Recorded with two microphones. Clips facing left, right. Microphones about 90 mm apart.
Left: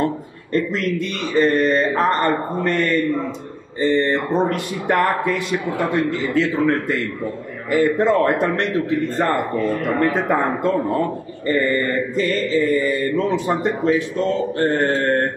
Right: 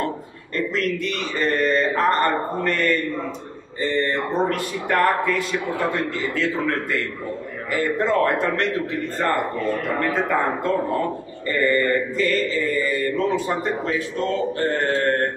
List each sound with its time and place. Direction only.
0.0 s mantra: 20° left (ahead or behind)
9.8 s mantra: 20° left (ahead or behind)